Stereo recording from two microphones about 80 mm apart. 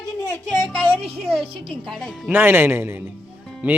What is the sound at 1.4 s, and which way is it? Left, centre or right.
Speech, right.